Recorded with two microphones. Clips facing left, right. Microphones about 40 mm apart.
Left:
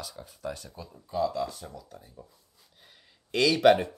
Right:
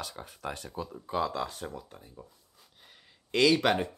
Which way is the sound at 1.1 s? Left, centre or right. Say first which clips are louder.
Left 2 dB; right.